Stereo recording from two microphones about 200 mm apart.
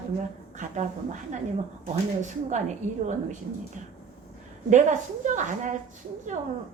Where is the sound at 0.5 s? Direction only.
40° right (ahead or behind).